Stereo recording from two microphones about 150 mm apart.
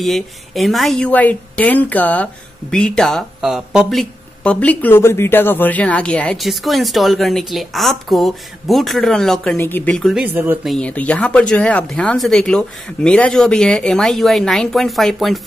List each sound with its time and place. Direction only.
0.0 s a woman's voice: centre (ahead or behind)
9.6 s a woman's voice: 15° left (ahead or behind)
10.2 s speech: 10° right (ahead or behind)
10.6 s speech: 5° left (ahead or behind)